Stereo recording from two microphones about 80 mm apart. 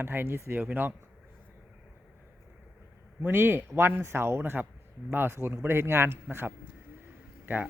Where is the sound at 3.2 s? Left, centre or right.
Right.